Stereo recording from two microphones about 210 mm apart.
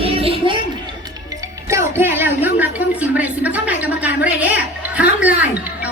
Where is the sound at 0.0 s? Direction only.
25° right (ahead or behind).